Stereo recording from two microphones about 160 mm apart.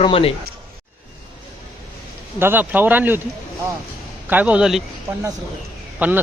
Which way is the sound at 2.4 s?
10° right (ahead or behind).